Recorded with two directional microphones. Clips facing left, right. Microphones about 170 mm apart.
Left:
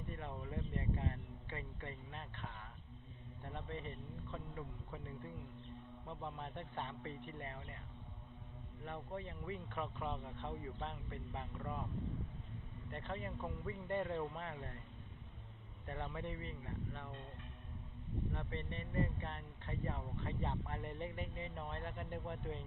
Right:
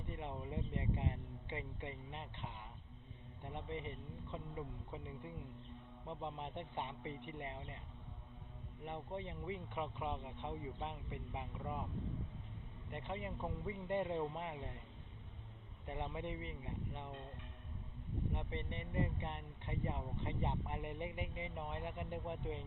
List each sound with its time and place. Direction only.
0.1 s speech: 20° right (ahead or behind)
8.8 s speech: 20° right (ahead or behind)
12.9 s speech: 15° right (ahead or behind)
15.9 s speech: 15° right (ahead or behind)
18.3 s speech: 15° right (ahead or behind)